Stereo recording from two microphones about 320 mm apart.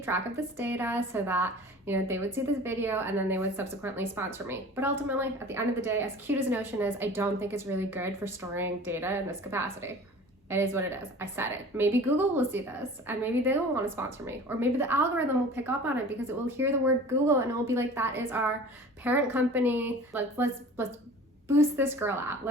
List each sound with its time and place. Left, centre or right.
0.3 s a woman's voice: centre